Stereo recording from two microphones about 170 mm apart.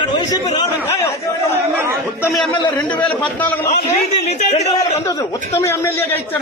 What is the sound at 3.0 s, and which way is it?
Speech, 10° left (ahead or behind).